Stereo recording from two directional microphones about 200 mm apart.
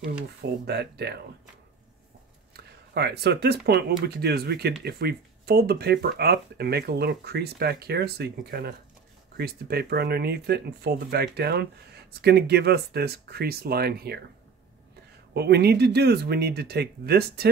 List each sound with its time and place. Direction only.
0.4 s speech: 55° right (ahead or behind)
2.5 s speech: 55° right (ahead or behind)
15.3 s speech: 55° right (ahead or behind)